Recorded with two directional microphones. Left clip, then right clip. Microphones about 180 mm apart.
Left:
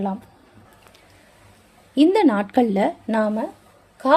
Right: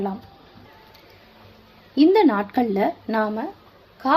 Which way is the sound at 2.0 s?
40° left (ahead or behind).